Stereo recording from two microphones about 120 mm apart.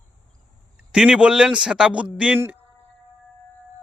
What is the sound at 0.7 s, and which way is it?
A man's voice, 5° right (ahead or behind).